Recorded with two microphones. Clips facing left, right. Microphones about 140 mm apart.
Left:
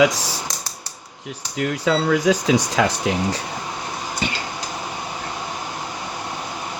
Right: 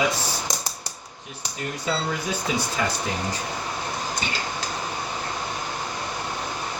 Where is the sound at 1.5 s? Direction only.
90° left.